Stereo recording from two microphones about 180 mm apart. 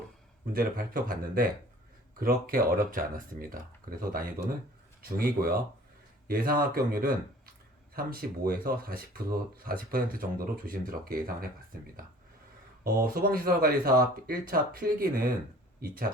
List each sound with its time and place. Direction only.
0.5 s speech: 50° right (ahead or behind)
12.8 s speech: 55° right (ahead or behind)